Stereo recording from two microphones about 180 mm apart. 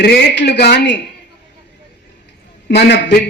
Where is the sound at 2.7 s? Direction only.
65° left (ahead or behind).